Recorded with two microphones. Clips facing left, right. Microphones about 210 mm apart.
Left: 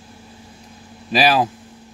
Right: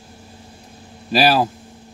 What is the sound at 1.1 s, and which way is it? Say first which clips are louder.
Speech: right 1 dB; centre (ahead or behind).